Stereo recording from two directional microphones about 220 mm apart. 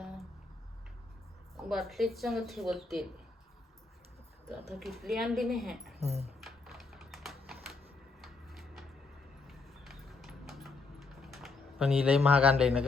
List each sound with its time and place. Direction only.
1.6 s speech: centre (ahead or behind)
4.7 s speech: centre (ahead or behind)
6.0 s speech: 30° right (ahead or behind)
6.4 s typing: centre (ahead or behind)
8.2 s a sound: centre (ahead or behind)